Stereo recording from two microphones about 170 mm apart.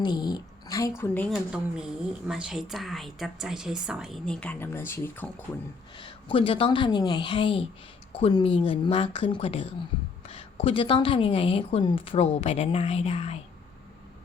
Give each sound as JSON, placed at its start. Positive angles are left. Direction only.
{"t": 0.0, "sound": "a woman's voice", "side_deg": 25}
{"t": 2.2, "sound": "a woman's voice", "side_deg": -5}
{"t": 6.0, "sound": "a woman's voice", "side_deg": 30}